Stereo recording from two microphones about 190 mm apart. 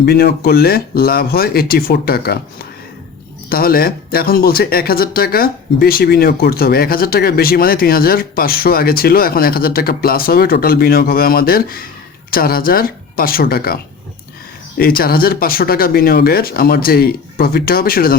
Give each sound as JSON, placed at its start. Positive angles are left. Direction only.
{"t": 0.0, "sound": "speech", "side_deg": 55}